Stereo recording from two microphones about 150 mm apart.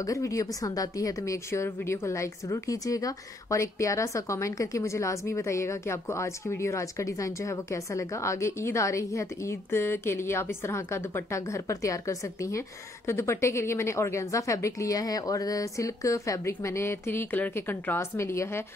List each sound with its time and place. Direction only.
0.0 s a woman's voice: 20° left (ahead or behind)